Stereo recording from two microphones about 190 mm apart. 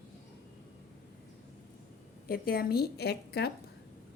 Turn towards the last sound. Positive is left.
turn(degrees=60)  # may be behind; listen again after turning